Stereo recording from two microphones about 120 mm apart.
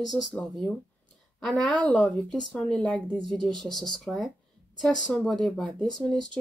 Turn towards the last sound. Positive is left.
turn(degrees=5)  # may be behind; listen again after turning